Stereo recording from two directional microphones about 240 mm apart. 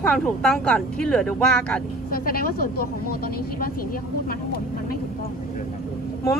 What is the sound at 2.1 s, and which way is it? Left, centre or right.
Speech, left.